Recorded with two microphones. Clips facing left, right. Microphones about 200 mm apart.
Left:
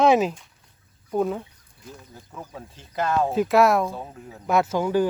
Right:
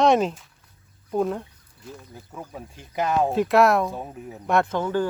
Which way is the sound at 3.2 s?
Centre (ahead or behind).